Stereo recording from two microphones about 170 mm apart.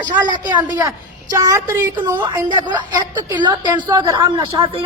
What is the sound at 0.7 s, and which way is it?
A woman's voice, 20° right (ahead or behind).